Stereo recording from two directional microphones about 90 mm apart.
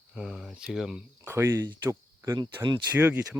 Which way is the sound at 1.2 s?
25° right (ahead or behind).